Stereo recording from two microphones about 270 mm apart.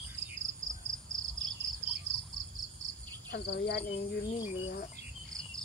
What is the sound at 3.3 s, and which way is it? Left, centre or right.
Speech, left.